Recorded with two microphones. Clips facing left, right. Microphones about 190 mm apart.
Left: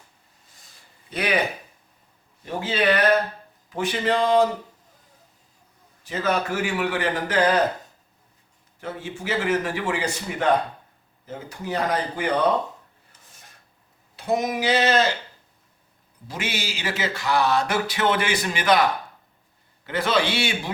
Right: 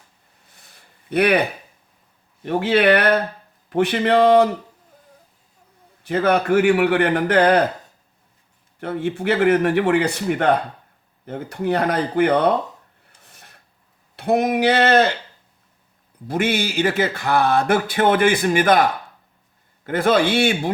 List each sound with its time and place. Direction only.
0.5 s a sound: 60° right (ahead or behind)
2.4 s a man's voice: 65° right (ahead or behind)
6.1 s a man's voice: 60° right (ahead or behind)
8.8 s a man's voice: 60° right (ahead or behind)
13.2 s filing: 60° right (ahead or behind)
14.2 s a man's voice: 60° right (ahead or behind)
16.2 s speech: 55° right (ahead or behind)